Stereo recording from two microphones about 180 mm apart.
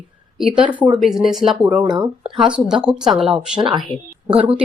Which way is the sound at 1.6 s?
25° right (ahead or behind).